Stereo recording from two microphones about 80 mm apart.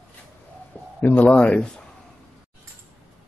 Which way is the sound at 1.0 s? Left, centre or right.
Left.